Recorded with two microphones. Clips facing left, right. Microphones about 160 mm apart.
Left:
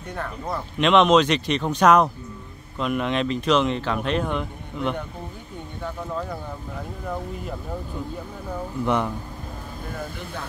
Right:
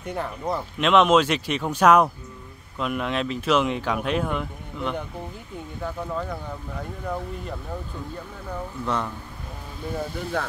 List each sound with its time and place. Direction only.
0.1 s speech: 10° right (ahead or behind)
6.8 s speech: centre (ahead or behind)
8.5 s speech: 15° left (ahead or behind)
10.4 s speech: 60° right (ahead or behind)